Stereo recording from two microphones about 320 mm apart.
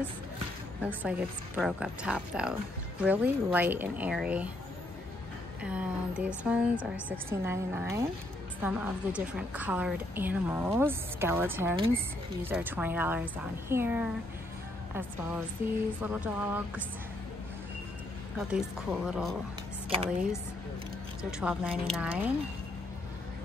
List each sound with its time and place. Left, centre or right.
0.8 s speech: centre
5.6 s a woman's voice: centre
16.0 s speech: centre
18.5 s speech: centre
21.3 s speech: centre